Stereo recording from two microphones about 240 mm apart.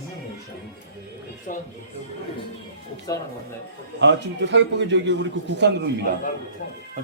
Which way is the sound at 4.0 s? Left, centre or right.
Right.